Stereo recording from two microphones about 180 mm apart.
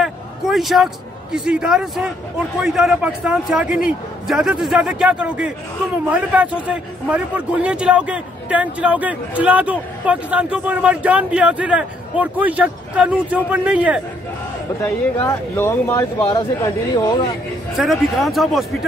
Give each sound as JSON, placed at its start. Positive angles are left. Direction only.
{"t": 0.0, "sound": "a sound", "side_deg": 0}
{"t": 1.3, "sound": "a man's voice", "side_deg": -5}
{"t": 14.8, "sound": "speech", "side_deg": 15}
{"t": 17.7, "sound": "a man's voice", "side_deg": 0}